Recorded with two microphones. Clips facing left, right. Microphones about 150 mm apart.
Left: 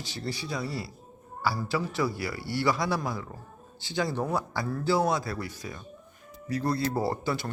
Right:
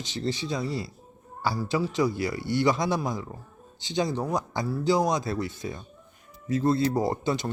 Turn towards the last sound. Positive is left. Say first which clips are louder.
# right 3 dB
turn(degrees=-20)  # may be behind; listen again after turning